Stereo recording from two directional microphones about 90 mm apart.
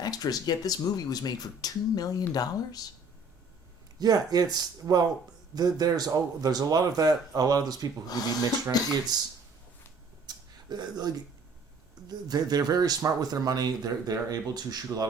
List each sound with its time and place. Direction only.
0.0 s speech: 45° left (ahead or behind)
4.0 s speech: 45° right (ahead or behind)
8.7 s speech: 45° left (ahead or behind)
9.1 s speech: 50° right (ahead or behind)
10.2 s a sound: 50° right (ahead or behind)
12.0 s speech: 45° right (ahead or behind)